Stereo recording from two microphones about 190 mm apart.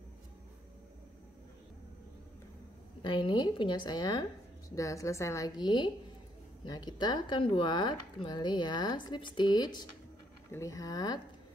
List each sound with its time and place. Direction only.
3.0 s speech: 25° left (ahead or behind)